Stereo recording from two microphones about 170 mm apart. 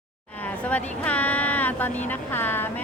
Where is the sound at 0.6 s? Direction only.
10° left (ahead or behind).